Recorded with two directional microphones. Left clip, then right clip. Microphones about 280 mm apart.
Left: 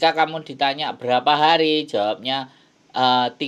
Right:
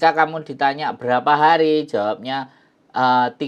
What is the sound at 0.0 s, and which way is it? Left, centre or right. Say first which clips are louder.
Speech: right 2 dB; right.